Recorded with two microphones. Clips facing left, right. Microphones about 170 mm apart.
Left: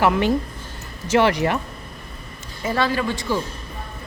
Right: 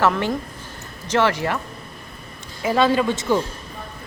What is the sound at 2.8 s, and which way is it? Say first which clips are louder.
Speech: right 4 dB; 20° right (ahead or behind).